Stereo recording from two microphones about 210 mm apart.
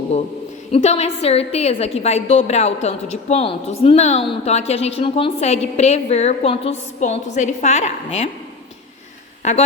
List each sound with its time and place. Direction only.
0.7 s a woman's voice: 30° left (ahead or behind)
9.4 s speech: 35° left (ahead or behind)